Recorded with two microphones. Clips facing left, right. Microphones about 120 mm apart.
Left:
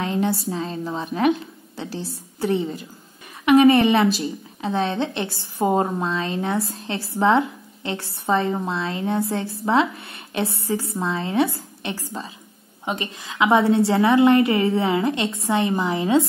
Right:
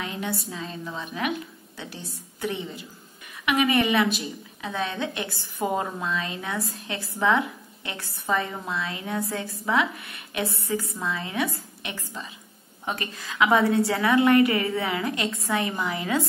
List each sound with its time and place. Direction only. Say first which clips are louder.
0.0 s a sound: left 8 dB; 35° left (ahead or behind)
0.5 s a woman's voice: left 8 dB; 35° left (ahead or behind)
12.8 s a woman's voice: left 4 dB; 20° left (ahead or behind)